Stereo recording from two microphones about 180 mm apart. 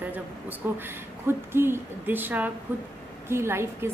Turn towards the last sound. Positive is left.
turn(degrees=-15)  # may be behind; listen again after turning